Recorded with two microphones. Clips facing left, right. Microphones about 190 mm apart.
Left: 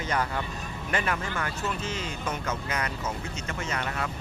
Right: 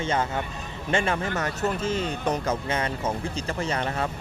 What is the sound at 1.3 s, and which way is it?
Speech, 40° right (ahead or behind).